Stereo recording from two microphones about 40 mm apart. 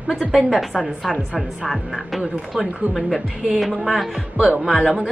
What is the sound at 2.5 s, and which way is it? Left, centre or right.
Speech, centre.